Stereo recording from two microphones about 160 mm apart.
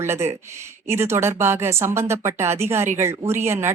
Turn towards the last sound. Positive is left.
turn(degrees=-15)  # may be behind; listen again after turning